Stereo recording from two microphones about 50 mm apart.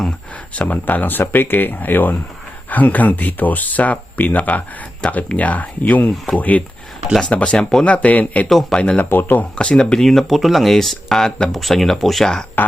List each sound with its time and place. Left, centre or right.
0.5 s speech: left
5.0 s speech: centre
5.4 s speech: left
9.0 s speech: left
9.6 s speech: centre
10.1 s speech: centre